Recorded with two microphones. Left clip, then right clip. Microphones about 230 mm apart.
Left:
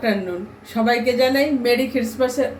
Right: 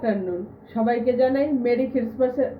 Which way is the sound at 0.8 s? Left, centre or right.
Left.